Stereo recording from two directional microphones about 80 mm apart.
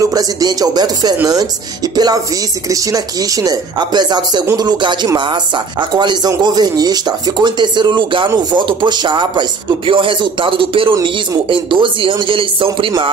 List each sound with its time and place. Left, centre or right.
0.0 s speech: right
3.7 s speech: right